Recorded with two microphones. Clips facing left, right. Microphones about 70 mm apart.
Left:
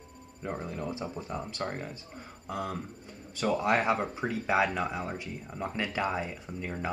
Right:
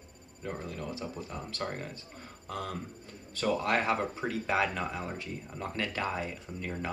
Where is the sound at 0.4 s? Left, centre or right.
Left.